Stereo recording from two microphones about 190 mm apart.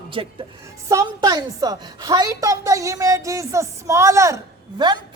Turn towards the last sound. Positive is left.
turn(degrees=-25)  # may be behind; listen again after turning